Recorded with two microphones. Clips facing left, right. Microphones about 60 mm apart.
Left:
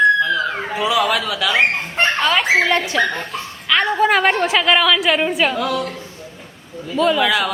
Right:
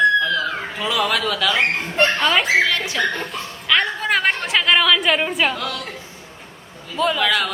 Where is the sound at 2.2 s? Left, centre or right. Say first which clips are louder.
Left 3 dB; centre.